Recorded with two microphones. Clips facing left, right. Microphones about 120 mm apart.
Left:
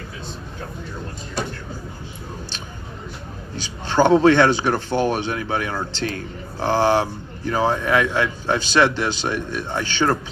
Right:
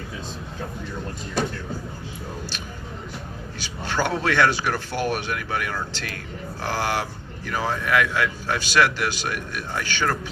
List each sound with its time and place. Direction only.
3.8 s speech: 30° left (ahead or behind)